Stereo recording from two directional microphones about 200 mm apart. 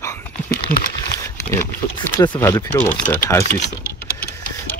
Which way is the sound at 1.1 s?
15° left (ahead or behind).